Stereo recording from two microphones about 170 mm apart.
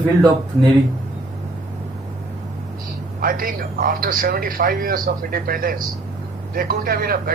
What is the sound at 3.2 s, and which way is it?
Speech, 55° right (ahead or behind).